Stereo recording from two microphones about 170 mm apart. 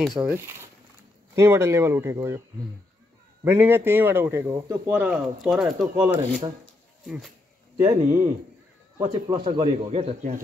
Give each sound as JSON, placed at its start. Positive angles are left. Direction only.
{"t": 0.0, "sound": "a man's voice", "side_deg": -5}
{"t": 3.4, "sound": "a man's voice", "side_deg": -15}
{"t": 7.7, "sound": "a man's voice", "side_deg": -15}
{"t": 9.0, "sound": "speech", "side_deg": -30}